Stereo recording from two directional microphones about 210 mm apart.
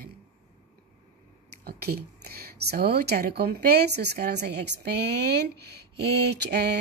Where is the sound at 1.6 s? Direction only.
45° right (ahead or behind).